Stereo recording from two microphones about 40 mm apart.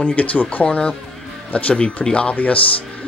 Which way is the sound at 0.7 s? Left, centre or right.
Left.